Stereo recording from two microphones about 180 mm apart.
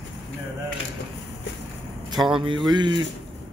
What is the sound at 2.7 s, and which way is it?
Speech, 25° right (ahead or behind).